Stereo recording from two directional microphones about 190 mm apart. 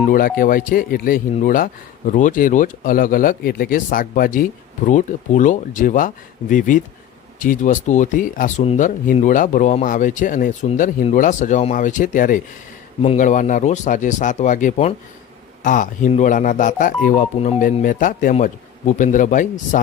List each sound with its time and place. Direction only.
0.1 s speech: 50° left (ahead or behind)